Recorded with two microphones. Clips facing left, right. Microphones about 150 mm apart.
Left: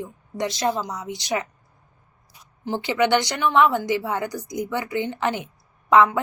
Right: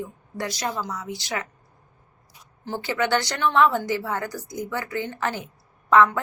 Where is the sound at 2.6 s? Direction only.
15° left (ahead or behind).